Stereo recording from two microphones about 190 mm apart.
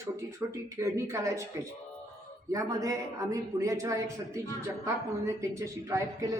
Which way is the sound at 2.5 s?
15° right (ahead or behind).